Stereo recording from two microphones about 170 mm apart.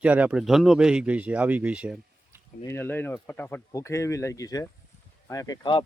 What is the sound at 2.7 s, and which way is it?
Speech, 10° left (ahead or behind).